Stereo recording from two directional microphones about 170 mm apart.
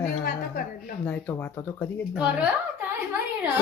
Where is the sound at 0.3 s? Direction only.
60° left (ahead or behind).